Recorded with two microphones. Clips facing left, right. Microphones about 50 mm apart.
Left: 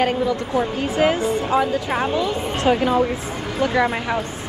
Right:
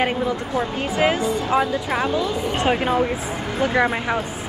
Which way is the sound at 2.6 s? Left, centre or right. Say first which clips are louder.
Left 3 dB; right.